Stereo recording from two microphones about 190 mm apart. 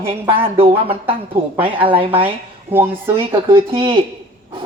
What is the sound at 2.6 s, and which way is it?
Speech, 10° right (ahead or behind).